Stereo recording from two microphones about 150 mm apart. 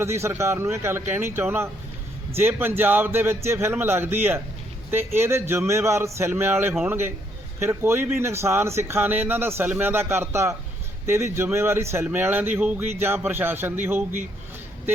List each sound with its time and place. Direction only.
0.0 s speech: 15° right (ahead or behind)